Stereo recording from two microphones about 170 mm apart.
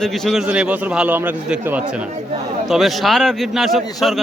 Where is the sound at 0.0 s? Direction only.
Centre (ahead or behind).